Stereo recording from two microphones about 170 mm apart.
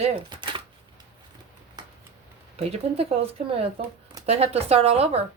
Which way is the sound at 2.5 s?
35° right (ahead or behind).